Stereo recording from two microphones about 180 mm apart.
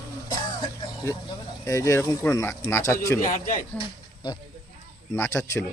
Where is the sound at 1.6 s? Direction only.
15° left (ahead or behind).